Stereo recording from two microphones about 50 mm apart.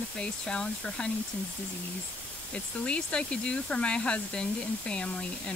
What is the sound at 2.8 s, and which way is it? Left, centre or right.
Speech, left.